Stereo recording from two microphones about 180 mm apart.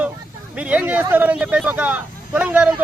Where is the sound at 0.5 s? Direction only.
10° right (ahead or behind).